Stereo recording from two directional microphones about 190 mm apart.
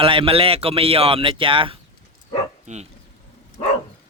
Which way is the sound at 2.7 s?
40° right (ahead or behind).